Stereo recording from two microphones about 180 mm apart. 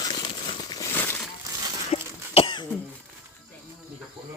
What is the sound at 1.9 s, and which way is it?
Cough, 35° left (ahead or behind).